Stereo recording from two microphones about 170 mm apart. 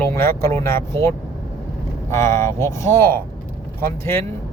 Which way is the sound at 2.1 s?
15° left (ahead or behind).